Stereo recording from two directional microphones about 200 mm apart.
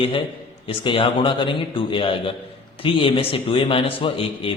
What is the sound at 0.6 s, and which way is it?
Speech, 25° left (ahead or behind).